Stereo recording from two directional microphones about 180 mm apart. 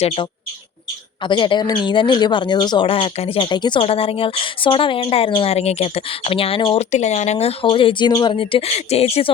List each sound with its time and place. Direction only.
1.2 s speech: 25° left (ahead or behind)